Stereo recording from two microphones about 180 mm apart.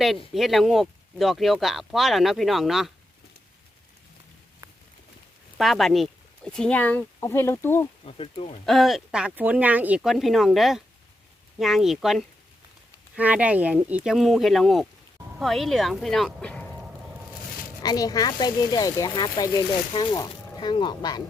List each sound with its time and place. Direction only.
0.3 s speech: centre (ahead or behind)
5.5 s speech: centre (ahead or behind)
8.0 s speech: 30° left (ahead or behind)
8.6 s speech: centre (ahead or behind)
17.8 s speech: 20° left (ahead or behind)